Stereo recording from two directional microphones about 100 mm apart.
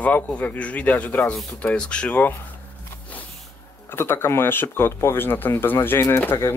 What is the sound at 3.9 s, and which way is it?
Speech, 25° left (ahead or behind).